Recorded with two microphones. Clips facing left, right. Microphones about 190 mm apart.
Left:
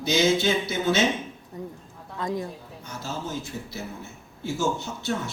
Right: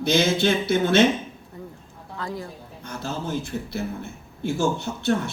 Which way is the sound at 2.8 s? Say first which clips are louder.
Right 3 dB; 60° right (ahead or behind).